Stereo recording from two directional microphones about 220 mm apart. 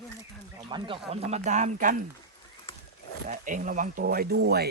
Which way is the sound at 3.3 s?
35° right (ahead or behind).